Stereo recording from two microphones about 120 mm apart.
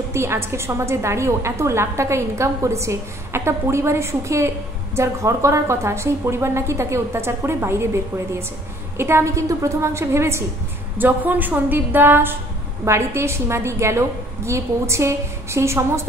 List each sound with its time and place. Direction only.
0.1 s a woman's voice: 20° right (ahead or behind)